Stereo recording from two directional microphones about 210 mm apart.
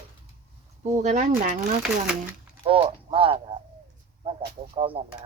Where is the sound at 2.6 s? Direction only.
25° right (ahead or behind).